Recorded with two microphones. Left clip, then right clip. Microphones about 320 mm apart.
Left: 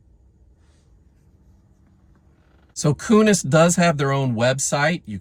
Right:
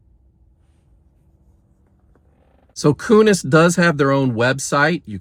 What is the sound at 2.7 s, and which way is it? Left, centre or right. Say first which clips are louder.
Speech: right 5 dB; centre.